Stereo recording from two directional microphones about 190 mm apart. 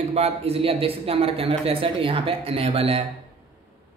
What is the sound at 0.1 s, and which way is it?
Speech, 30° right (ahead or behind).